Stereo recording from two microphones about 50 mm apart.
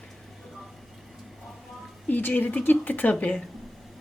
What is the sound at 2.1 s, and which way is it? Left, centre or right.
Speech, left.